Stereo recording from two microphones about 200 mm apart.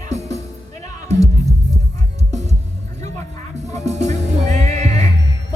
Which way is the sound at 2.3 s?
35° right (ahead or behind).